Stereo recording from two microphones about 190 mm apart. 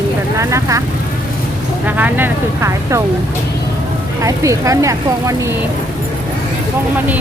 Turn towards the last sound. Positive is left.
turn(degrees=-15)  # may be behind; listen again after turning